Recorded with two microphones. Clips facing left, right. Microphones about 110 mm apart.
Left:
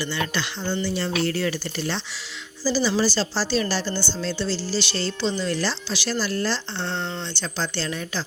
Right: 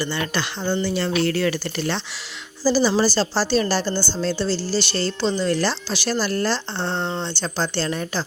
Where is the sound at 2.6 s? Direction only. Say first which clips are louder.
Right 4 dB; 40° right (ahead or behind).